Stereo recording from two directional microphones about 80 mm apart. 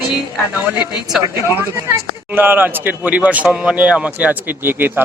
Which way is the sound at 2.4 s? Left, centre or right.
Right.